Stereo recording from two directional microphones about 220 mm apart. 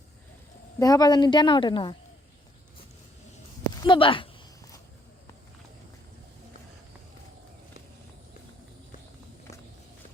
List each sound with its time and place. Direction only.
0.8 s a woman's voice: 15° left (ahead or behind)
3.8 s a woman's voice: 25° left (ahead or behind)